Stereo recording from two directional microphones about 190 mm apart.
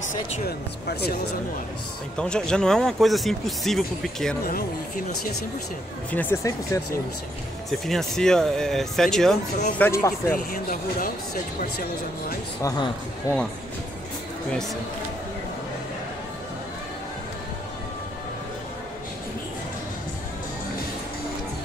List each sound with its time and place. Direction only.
0.5 s speech: 55° left (ahead or behind)
2.1 s speech: 5° left (ahead or behind)
6.1 s speech: 10° left (ahead or behind)
7.8 s speech: centre (ahead or behind)
9.8 s speech: 15° left (ahead or behind)
10.3 s speech: 50° left (ahead or behind)
12.6 s speech: 25° left (ahead or behind)
14.5 s speech: centre (ahead or behind)